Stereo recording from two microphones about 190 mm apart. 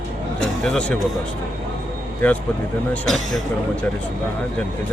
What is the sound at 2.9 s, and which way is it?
Speech, centre (ahead or behind).